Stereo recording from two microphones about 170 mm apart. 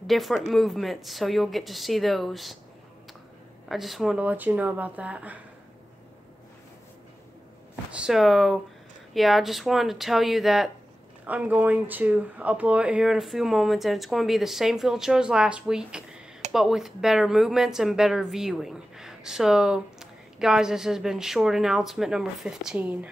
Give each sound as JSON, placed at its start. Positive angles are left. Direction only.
{"t": 0.0, "sound": "speech", "side_deg": 0}
{"t": 3.6, "sound": "speech", "side_deg": 0}
{"t": 8.0, "sound": "speech", "side_deg": 0}